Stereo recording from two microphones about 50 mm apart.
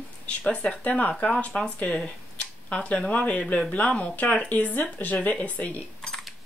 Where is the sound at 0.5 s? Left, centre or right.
Left.